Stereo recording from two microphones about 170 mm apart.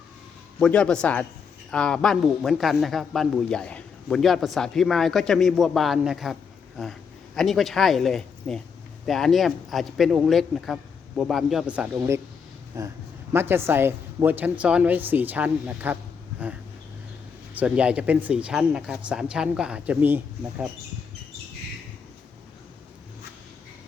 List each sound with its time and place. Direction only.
0.6 s a man's voice: 5° left (ahead or behind)
7.3 s a man's voice: centre (ahead or behind)
11.9 s speech: 20° right (ahead or behind)
17.5 s speech: 10° right (ahead or behind)